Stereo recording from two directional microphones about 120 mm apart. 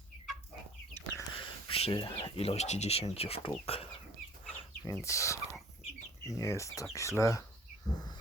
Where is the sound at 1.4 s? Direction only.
50° left (ahead or behind).